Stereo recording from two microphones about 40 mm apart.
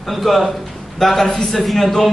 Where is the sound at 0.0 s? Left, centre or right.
Centre.